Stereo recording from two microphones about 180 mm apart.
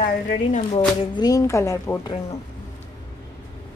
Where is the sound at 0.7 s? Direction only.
25° left (ahead or behind).